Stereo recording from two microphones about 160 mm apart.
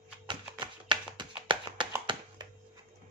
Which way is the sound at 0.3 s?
30° right (ahead or behind).